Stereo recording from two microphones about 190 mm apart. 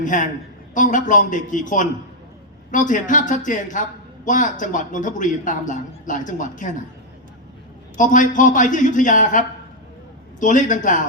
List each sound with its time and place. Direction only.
0.0 s speech: 45° left (ahead or behind)
7.9 s speech: 40° left (ahead or behind)
10.4 s speech: 40° left (ahead or behind)